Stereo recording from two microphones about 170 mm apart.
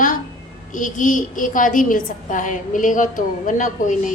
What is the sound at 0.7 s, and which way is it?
A woman's voice, 50° left (ahead or behind).